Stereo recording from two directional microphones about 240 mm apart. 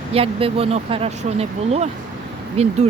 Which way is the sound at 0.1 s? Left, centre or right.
Right.